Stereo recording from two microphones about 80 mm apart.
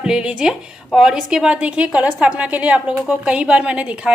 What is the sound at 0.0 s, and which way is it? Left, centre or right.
A woman's voice, centre.